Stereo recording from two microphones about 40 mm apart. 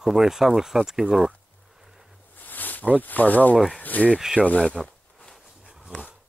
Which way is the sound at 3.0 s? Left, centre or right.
Left.